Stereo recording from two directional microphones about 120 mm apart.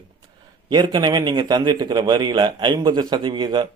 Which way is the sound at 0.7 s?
35° right (ahead or behind).